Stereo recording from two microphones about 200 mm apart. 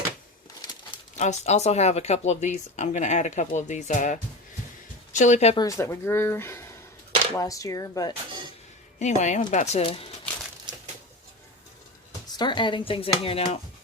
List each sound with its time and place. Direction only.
1.1 s speech: 35° left (ahead or behind)
5.5 s speech: 15° left (ahead or behind)
9.0 s speech: 35° left (ahead or behind)
12.4 s speech: 25° left (ahead or behind)